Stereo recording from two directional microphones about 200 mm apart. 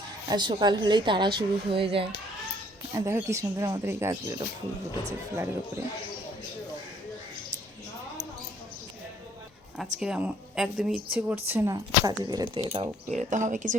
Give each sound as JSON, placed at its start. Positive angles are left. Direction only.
{"t": 0.3, "sound": "a woman's voice", "side_deg": -20}
{"t": 2.9, "sound": "speech", "side_deg": -15}
{"t": 10.0, "sound": "a woman's voice", "side_deg": -5}
{"t": 13.1, "sound": "speech", "side_deg": -40}